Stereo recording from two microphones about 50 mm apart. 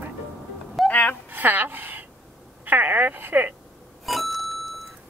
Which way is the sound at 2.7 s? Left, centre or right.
Right.